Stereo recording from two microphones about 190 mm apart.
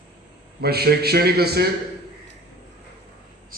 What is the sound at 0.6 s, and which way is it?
A man's voice, 55° right (ahead or behind).